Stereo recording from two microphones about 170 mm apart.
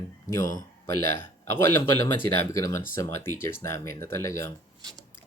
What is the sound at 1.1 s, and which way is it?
Speech, 15° left (ahead or behind).